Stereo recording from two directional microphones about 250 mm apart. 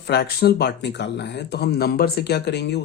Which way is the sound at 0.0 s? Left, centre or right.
Left.